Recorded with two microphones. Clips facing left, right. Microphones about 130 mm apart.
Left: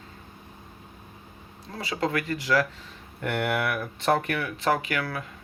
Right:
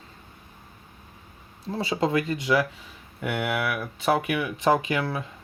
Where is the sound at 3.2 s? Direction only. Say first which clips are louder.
Even; 5° right (ahead or behind).